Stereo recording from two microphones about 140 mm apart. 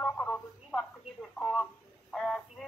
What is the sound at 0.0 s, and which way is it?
Radio, 10° left (ahead or behind).